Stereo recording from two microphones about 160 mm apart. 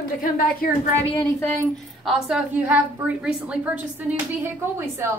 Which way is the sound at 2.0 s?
5° right (ahead or behind).